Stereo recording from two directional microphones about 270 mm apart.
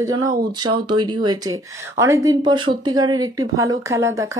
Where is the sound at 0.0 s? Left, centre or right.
Centre.